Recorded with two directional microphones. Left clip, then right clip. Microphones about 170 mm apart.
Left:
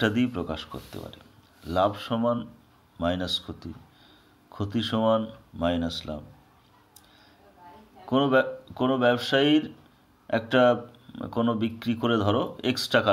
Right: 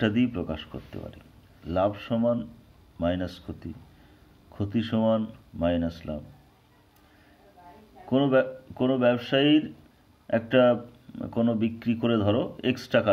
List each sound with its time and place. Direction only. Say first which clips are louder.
0.0 s speech: left 1 dB; 30° right (ahead or behind)
8.1 s speech: left 1 dB; 30° right (ahead or behind)